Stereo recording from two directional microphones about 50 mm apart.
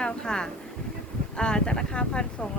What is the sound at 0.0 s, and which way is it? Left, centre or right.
Speech, centre.